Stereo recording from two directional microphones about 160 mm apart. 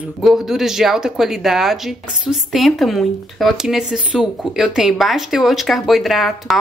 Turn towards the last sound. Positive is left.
turn(degrees=0)  # may be behind; listen again after turning